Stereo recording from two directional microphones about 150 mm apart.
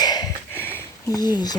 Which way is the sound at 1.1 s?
25° left (ahead or behind).